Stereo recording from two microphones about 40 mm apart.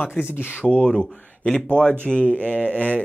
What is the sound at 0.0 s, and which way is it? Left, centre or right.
Speech, left.